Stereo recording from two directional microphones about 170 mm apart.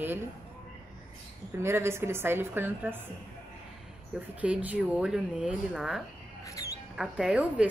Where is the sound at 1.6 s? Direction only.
15° right (ahead or behind).